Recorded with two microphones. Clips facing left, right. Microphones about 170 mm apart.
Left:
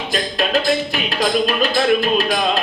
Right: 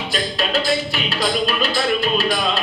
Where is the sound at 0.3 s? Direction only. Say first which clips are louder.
Left 3 dB; 45° left (ahead or behind).